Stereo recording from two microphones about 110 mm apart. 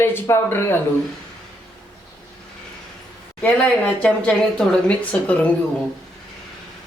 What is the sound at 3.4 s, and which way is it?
Speech, 10° left (ahead or behind).